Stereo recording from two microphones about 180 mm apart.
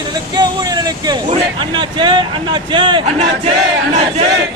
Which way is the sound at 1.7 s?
25° right (ahead or behind).